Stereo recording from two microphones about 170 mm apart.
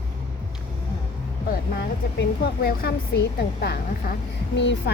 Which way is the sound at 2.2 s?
70° left (ahead or behind).